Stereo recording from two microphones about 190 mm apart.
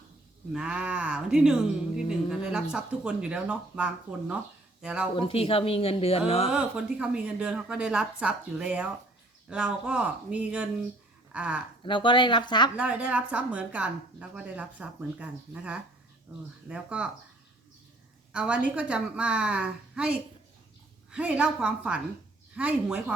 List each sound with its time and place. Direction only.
0.5 s a woman's voice: 5° right (ahead or behind)
5.1 s speech: 30° left (ahead or behind)
6.5 s a woman's voice: 5° right (ahead or behind)
11.8 s speech: 25° left (ahead or behind)
12.8 s a woman's voice: 5° right (ahead or behind)
18.3 s a woman's voice: 5° right (ahead or behind)